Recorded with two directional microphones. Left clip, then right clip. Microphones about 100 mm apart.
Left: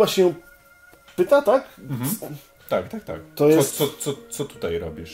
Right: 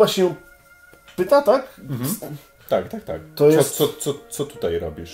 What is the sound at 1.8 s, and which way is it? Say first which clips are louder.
Speech: right 1 dB; 30° right (ahead or behind).